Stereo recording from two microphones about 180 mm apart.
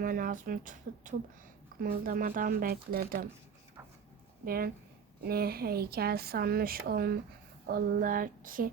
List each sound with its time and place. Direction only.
0.0 s speech: 50° right (ahead or behind)
4.4 s speech: 55° right (ahead or behind)